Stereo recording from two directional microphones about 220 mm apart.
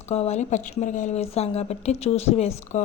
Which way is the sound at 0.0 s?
30° left (ahead or behind).